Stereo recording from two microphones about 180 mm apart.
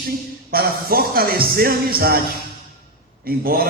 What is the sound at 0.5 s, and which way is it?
A man's voice, 55° right (ahead or behind).